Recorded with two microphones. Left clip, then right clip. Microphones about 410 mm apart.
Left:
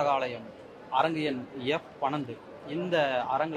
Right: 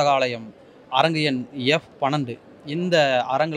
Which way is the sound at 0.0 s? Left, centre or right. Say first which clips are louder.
Right 8 dB; right.